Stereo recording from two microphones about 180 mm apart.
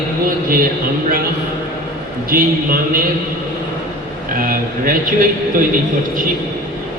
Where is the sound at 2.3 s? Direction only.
55° right (ahead or behind).